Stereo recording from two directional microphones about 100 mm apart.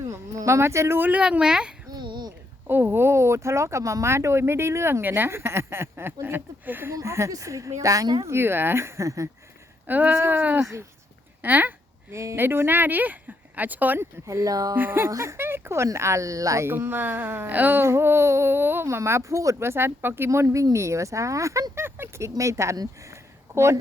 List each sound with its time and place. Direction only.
0.0 s speech: 30° right (ahead or behind); by 1.7 s 10° right (ahead or behind)
1.9 s babbling: 50° right (ahead or behind)
2.6 s a woman's voice: 20° right (ahead or behind); by 8.2 s 40° right (ahead or behind)
8.3 s speech: 25° right (ahead or behind)
9.8 s speech: 15° right (ahead or behind)
12.1 s speech: 30° right (ahead or behind)
14.3 s a woman's voice: 35° right (ahead or behind)
14.8 s speech: 20° right (ahead or behind)